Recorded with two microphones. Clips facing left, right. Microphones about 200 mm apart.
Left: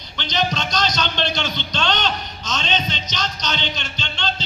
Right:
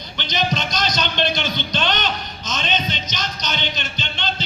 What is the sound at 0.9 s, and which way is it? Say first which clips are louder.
Speech: right 1 dB; 15° right (ahead or behind).